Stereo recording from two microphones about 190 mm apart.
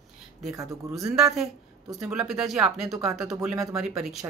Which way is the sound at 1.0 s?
Centre (ahead or behind).